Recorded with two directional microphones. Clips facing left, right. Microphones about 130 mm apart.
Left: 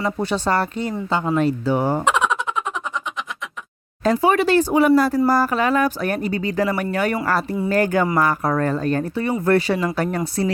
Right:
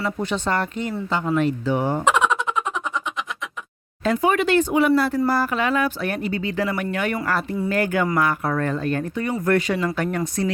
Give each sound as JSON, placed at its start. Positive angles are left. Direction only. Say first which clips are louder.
{"t": 0.0, "sound": "speech", "louder": "left 3 dB", "side_deg": 35}
{"t": 2.0, "sound": "a sound", "louder": "even", "side_deg": 0}
{"t": 4.0, "sound": "speech", "louder": "left 3 dB", "side_deg": 35}